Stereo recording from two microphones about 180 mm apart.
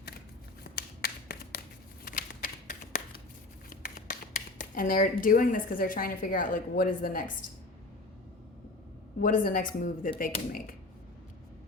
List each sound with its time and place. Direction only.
0.6 s finger snapping: 55° left (ahead or behind)
2.0 s shuffling cards: 50° left (ahead or behind)
3.7 s a sound: 50° left (ahead or behind)
5.2 s a woman's voice: 50° left (ahead or behind)
9.2 s a woman's voice: 50° left (ahead or behind)